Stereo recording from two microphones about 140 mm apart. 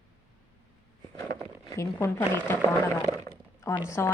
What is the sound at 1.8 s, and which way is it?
Speech, 20° left (ahead or behind).